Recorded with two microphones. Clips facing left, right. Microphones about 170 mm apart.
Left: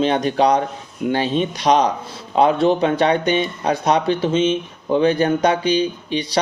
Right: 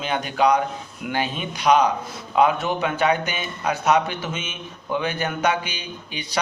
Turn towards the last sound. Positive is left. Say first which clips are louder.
# left 11 dB
turn(degrees=35)  # may be behind; listen again after turning